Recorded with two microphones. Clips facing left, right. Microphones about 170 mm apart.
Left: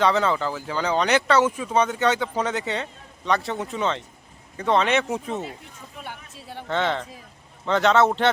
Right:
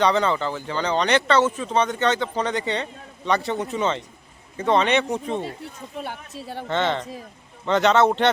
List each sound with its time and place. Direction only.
0.0 s speech: 5° left (ahead or behind)
6.0 s speech: 40° right (ahead or behind)
6.7 s speech: centre (ahead or behind)